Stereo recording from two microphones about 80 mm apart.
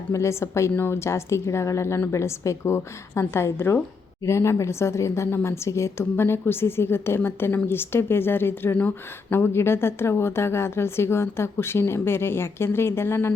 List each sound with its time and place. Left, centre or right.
0.1 s a woman's voice: left